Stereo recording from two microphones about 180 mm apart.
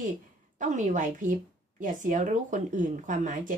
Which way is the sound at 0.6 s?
45° right (ahead or behind).